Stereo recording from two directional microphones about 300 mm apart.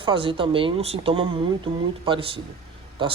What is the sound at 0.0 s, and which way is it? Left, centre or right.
Speech, centre.